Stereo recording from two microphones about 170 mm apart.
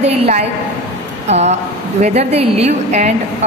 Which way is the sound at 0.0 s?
40° right (ahead or behind).